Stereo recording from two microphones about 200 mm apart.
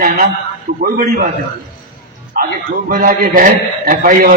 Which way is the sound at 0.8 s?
45° right (ahead or behind).